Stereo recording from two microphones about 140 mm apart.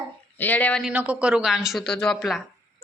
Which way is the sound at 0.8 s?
10° right (ahead or behind).